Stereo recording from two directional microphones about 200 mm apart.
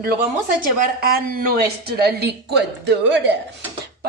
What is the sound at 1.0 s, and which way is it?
A woman's voice, 50° right (ahead or behind).